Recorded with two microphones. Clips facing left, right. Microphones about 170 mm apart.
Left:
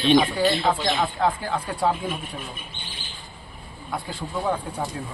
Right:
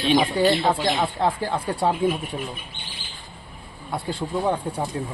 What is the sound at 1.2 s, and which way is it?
Speech, 30° right (ahead or behind).